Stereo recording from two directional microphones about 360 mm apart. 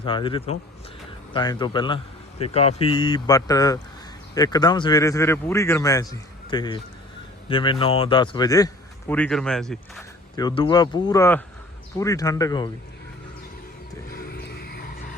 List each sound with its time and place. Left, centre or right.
0.0 s speech: centre
14.1 s vehicle: left